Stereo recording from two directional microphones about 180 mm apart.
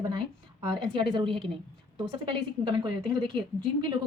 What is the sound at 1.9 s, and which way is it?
Speech, 25° right (ahead or behind).